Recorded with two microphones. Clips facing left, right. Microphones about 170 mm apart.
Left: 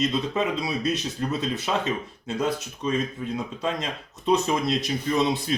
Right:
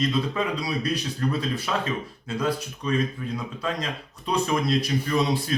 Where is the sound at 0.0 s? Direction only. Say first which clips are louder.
Left 1 dB; 20° left (ahead or behind).